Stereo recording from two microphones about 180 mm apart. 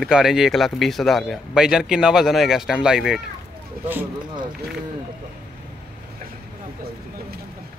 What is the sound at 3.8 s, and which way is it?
Speech, 55° right (ahead or behind).